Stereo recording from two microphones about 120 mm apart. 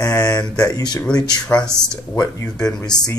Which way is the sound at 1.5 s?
10° left (ahead or behind).